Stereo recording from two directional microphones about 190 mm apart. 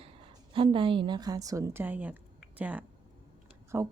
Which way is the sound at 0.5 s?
25° right (ahead or behind).